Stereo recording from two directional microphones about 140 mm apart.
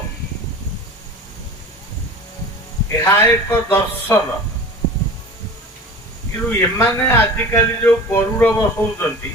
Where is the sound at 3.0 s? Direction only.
15° left (ahead or behind).